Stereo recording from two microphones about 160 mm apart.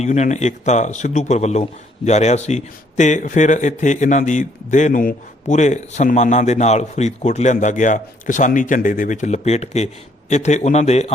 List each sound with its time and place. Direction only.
0.0 s speech: 45° left (ahead or behind)